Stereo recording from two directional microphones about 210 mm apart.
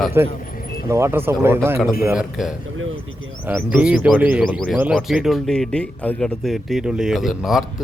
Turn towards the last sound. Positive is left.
turn(degrees=0)  # may be behind; listen again after turning